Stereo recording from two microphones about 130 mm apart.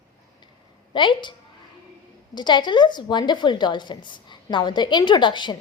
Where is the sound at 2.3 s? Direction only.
35° left (ahead or behind).